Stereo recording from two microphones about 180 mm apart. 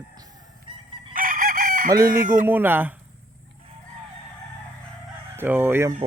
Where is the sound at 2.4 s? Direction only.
10° right (ahead or behind).